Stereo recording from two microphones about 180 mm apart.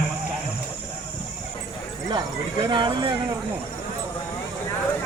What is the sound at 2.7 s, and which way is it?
Speech, 25° right (ahead or behind).